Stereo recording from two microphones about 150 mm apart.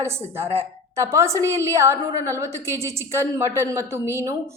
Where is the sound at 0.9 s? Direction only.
20° right (ahead or behind).